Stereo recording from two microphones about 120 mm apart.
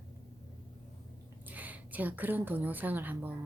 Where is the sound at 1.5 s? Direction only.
15° right (ahead or behind).